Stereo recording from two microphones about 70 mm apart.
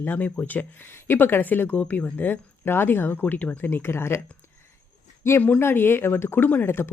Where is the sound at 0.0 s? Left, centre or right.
Left.